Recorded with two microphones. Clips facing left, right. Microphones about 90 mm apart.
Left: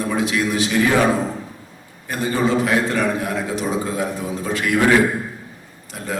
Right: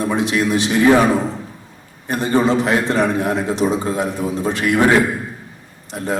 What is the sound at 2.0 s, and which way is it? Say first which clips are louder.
A man's voice: right 4 dB; 25° right (ahead or behind).